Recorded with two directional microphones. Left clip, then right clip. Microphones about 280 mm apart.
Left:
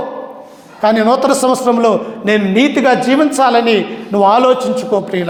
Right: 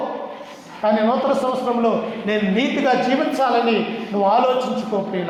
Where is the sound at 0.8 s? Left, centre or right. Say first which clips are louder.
Left 7 dB; left.